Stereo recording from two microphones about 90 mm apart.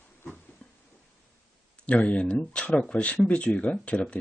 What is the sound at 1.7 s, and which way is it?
Speech, 15° left (ahead or behind).